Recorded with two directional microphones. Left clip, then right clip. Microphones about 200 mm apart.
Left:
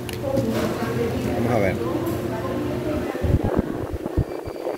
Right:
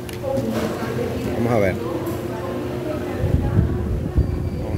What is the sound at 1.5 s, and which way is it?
Speech, 35° right (ahead or behind).